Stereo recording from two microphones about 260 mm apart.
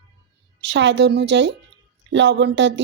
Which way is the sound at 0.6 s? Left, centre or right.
Right.